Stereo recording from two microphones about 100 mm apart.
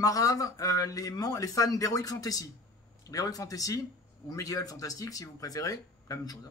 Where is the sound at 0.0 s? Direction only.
35° left (ahead or behind).